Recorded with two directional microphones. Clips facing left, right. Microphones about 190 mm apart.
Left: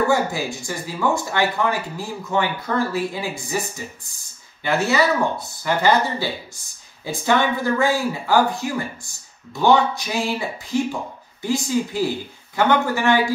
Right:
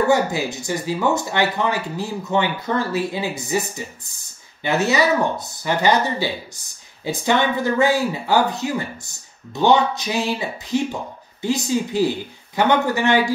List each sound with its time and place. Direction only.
0.1 s speech: 20° right (ahead or behind)